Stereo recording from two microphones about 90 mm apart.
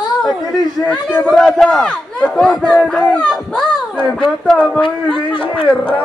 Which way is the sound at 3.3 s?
5° left (ahead or behind).